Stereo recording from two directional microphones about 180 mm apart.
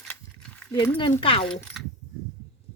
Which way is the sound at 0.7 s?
25° left (ahead or behind).